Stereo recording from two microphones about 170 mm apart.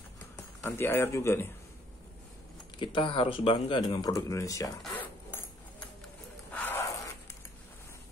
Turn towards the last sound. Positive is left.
turn(degrees=10)  # may be behind; listen again after turning